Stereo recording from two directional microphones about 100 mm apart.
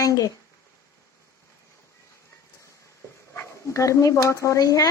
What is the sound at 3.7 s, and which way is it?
A woman's voice, 30° left (ahead or behind).